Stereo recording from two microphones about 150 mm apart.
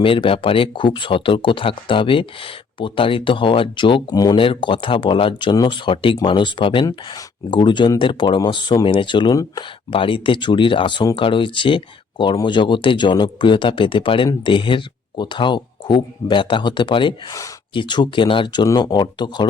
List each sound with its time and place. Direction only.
0.0 s speech: 35° left (ahead or behind)